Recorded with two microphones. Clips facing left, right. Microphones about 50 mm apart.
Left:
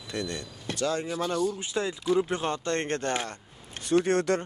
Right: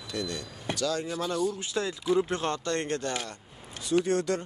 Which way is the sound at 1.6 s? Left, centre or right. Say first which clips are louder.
Left 1 dB; left.